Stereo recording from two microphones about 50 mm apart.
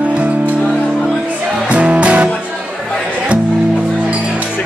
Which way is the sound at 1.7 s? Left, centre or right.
Right.